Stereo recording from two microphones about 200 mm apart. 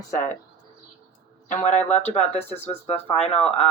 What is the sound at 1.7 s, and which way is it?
Speech, 30° left (ahead or behind).